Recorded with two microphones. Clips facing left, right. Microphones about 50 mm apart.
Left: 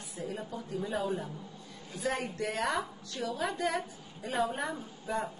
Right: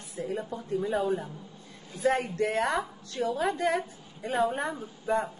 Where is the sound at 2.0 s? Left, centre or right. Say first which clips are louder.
Right 7 dB; right.